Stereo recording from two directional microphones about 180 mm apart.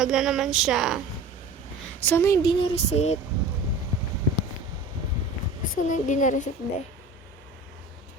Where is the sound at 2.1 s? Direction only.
15° left (ahead or behind); by 3.2 s 35° left (ahead or behind).